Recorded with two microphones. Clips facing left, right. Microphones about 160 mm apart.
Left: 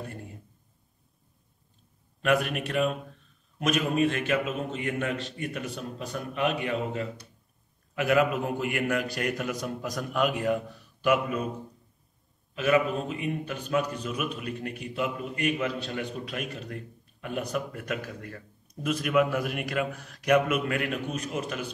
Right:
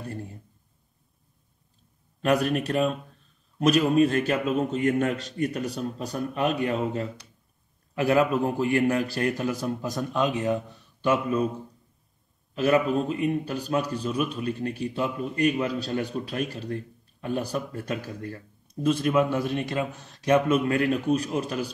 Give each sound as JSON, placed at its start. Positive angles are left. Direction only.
{"t": 2.2, "sound": "a man's voice", "side_deg": -35}
{"t": 12.5, "sound": "a man's voice", "side_deg": -35}